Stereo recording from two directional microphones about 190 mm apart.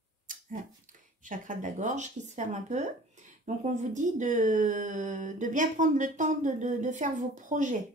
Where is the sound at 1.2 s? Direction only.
40° right (ahead or behind).